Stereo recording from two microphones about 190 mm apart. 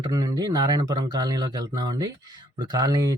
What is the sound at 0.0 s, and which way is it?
Speech, 20° right (ahead or behind).